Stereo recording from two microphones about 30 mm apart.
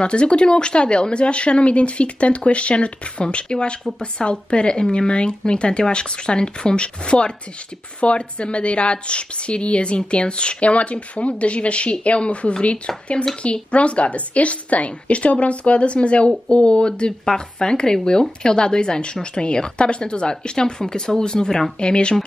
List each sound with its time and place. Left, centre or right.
0.0 s speech: left
10.6 s a woman's voice: left; by 21.6 s centre
21.7 s speech: left